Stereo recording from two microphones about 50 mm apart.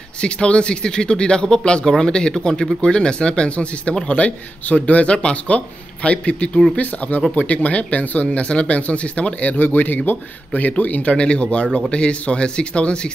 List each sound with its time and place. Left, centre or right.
0.2 s speech: centre
9.6 s speech: left
11.1 s speech: left